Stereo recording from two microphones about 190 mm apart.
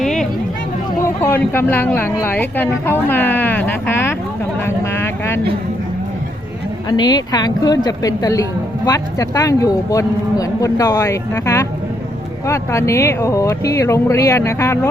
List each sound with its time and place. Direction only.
0.0 s a sound: centre (ahead or behind)
1.0 s a woman's voice: 10° left (ahead or behind)
6.9 s a woman's voice: 20° left (ahead or behind)